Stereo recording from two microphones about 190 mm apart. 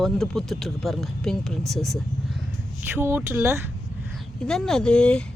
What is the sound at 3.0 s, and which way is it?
Speech, 10° right (ahead or behind).